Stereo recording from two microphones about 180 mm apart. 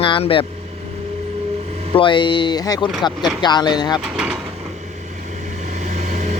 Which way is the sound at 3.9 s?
5° right (ahead or behind).